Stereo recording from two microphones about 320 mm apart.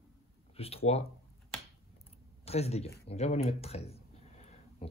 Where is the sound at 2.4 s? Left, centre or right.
Centre.